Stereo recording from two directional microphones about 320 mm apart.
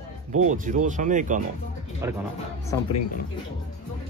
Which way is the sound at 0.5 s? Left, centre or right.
Right.